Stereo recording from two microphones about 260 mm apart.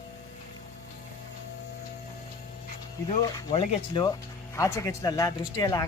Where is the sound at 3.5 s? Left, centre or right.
Centre.